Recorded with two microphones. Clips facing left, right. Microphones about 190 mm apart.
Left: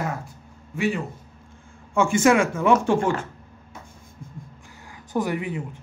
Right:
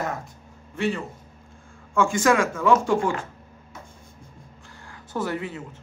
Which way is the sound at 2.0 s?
20° left (ahead or behind).